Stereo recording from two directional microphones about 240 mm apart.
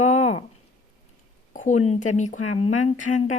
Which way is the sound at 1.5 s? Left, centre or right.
Left.